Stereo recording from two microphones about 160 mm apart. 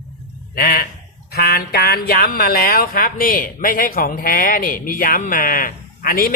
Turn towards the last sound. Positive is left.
turn(degrees=65)  # may be behind; listen again after turning